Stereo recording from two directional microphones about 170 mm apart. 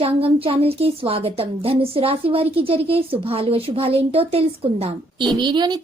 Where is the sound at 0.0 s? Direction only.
35° right (ahead or behind).